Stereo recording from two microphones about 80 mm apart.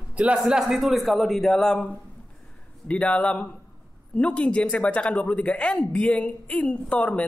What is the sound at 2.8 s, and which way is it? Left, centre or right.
Speech, centre.